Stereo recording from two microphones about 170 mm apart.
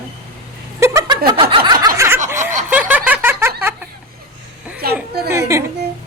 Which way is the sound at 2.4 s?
45° right (ahead or behind).